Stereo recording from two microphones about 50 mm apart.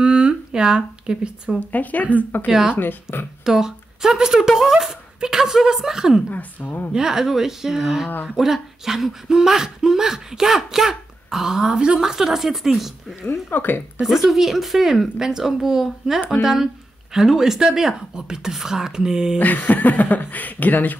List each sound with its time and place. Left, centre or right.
0.0 s a sound: centre
1.6 s speech: left
3.4 s speech: centre
6.3 s speech: left
6.9 s speech: centre
13.3 s speech: left
14.0 s speech: centre
19.3 s speech: left